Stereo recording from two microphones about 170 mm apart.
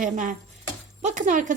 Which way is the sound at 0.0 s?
50° right (ahead or behind).